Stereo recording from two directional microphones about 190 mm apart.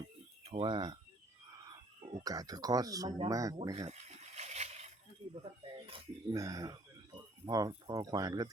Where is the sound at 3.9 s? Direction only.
35° right (ahead or behind).